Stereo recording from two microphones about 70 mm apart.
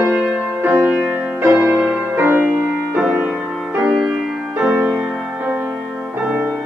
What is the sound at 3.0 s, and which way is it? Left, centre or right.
Music, centre.